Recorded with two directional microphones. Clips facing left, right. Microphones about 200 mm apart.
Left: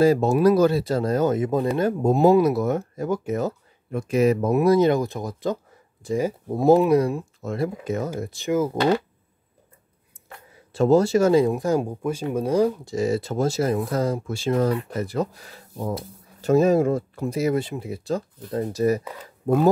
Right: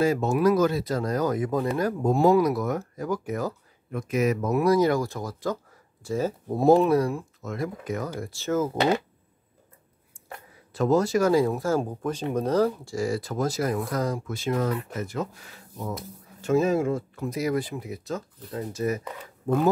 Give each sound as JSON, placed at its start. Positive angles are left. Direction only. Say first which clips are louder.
{"t": 0.0, "sound": "speech", "louder": "left 5 dB", "side_deg": 35}
{"t": 6.5, "sound": "speech", "louder": "left 2 dB", "side_deg": 5}
{"t": 6.9, "sound": "speech", "louder": "left 3 dB", "side_deg": 20}
{"t": 10.7, "sound": "speech", "louder": "left 4 dB", "side_deg": 30}